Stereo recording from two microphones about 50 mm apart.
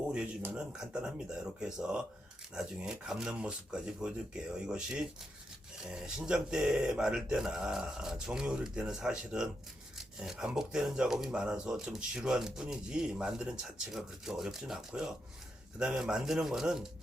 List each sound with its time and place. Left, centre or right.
0.5 s speech: centre